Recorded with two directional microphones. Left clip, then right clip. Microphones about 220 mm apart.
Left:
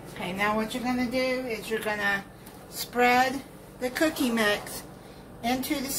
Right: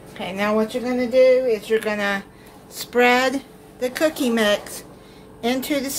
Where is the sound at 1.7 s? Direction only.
45° right (ahead or behind).